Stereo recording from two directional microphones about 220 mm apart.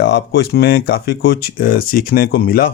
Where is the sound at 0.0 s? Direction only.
45° left (ahead or behind).